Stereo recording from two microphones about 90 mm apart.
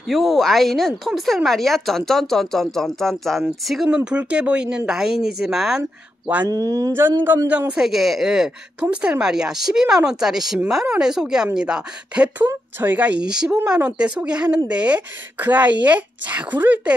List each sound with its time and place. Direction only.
0.1 s a woman's voice: centre (ahead or behind)
6.4 s speech: 45° right (ahead or behind)
7.4 s a woman's voice: 15° right (ahead or behind)
7.8 s a woman's voice: centre (ahead or behind)
12.4 s a woman's voice: 25° right (ahead or behind)